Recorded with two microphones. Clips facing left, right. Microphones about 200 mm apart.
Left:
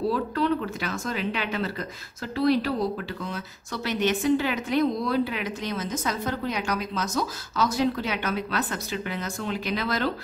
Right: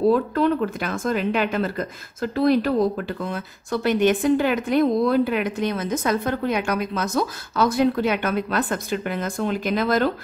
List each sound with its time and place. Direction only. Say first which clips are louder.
0.1 s speech: right 5 dB; 50° right (ahead or behind)